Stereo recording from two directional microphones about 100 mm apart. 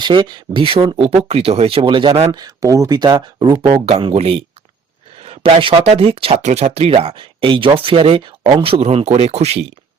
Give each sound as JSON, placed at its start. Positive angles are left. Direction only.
{"t": 0.0, "sound": "speech", "side_deg": -50}
{"t": 0.6, "sound": "speech", "side_deg": -60}
{"t": 0.9, "sound": "speech", "side_deg": -75}
{"t": 1.8, "sound": "speech", "side_deg": -50}
{"t": 2.1, "sound": "speech", "side_deg": -35}
{"t": 3.8, "sound": "speech", "side_deg": -80}
{"t": 5.2, "sound": "speech", "side_deg": -70}
{"t": 7.8, "sound": "speech", "side_deg": -70}